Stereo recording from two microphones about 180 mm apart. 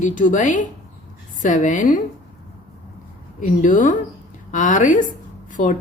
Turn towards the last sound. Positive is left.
turn(degrees=45)  # may be behind; listen again after turning